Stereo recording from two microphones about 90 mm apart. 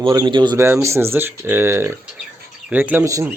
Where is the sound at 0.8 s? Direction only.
30° right (ahead or behind).